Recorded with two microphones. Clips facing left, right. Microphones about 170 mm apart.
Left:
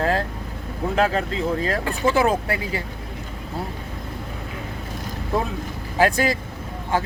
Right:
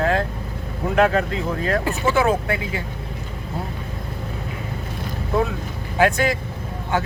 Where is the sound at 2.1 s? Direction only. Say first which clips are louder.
Right 1 dB; 35° left (ahead or behind).